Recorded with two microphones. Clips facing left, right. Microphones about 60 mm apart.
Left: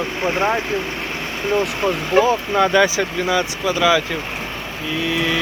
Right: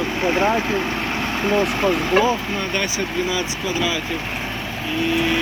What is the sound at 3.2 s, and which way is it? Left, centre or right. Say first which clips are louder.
Speech: left 4 dB; left.